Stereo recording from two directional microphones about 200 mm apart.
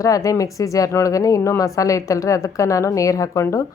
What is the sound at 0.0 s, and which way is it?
A woman's voice, 15° left (ahead or behind).